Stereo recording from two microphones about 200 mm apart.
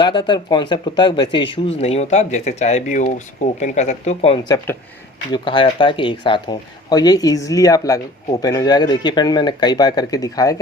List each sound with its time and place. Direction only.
0.0 s speech: 25° left (ahead or behind)
4.5 s speech: 10° left (ahead or behind)
5.3 s speech: 25° left (ahead or behind)